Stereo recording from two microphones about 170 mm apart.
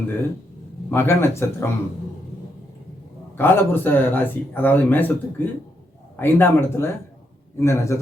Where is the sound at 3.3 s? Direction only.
10° left (ahead or behind).